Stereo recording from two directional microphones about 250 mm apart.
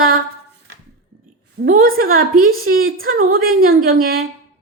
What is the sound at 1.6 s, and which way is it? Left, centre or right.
A woman's voice, right.